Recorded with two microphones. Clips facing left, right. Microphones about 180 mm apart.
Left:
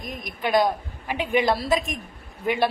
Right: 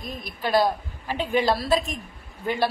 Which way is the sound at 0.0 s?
30° right (ahead or behind).